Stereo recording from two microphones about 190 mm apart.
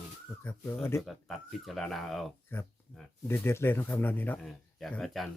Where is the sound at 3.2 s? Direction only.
15° left (ahead or behind).